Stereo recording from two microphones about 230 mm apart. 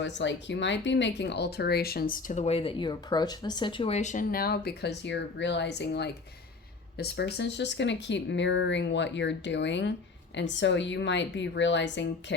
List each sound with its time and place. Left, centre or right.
0.0 s speech: left